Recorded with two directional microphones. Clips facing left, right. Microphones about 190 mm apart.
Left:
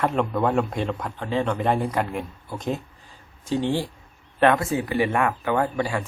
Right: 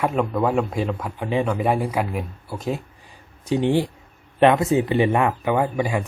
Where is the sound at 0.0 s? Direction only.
5° right (ahead or behind).